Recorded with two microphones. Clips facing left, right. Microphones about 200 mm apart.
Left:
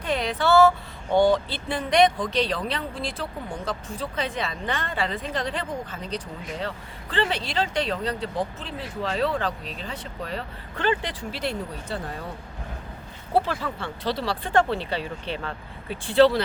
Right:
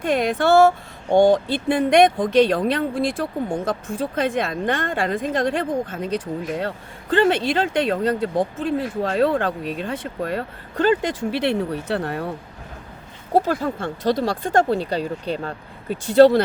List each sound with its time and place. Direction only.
0.0 s speech: 50° right (ahead or behind); by 12.3 s 65° right (ahead or behind)
13.3 s speech: 45° right (ahead or behind)